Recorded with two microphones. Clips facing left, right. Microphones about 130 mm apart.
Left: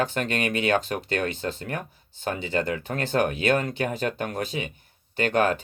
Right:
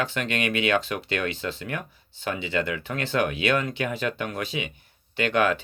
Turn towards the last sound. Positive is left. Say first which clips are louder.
# even
turn(degrees=40)  # may be behind; listen again after turning